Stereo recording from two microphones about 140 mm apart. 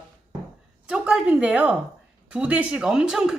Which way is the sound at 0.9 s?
5° right (ahead or behind).